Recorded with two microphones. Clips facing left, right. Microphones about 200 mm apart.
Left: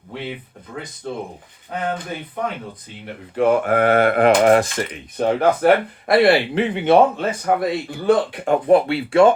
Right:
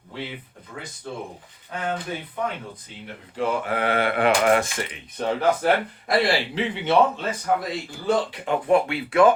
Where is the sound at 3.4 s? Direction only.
55° left (ahead or behind).